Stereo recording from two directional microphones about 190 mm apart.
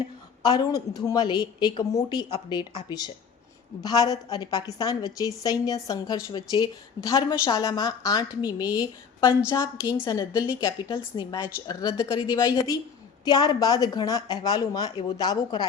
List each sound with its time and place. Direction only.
0.4 s a woman's voice: 20° left (ahead or behind)